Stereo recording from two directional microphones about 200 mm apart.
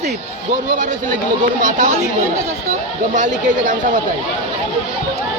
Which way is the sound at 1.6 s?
40° right (ahead or behind).